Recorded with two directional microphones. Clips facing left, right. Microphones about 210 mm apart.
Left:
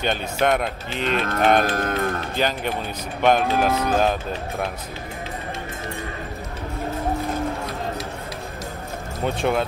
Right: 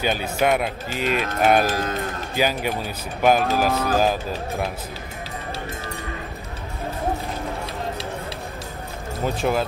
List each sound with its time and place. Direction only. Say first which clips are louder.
0.0 s speech: even; 5° right (ahead or behind)
1.7 s cattle: left 1 dB; 55° left (ahead or behind)
2.3 s speech: right 6 dB; 5° right (ahead or behind)
9.2 s speech: even; centre (ahead or behind)